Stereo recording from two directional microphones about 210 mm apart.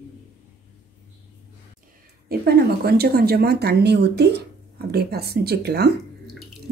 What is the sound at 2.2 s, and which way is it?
Speech, 50° right (ahead or behind).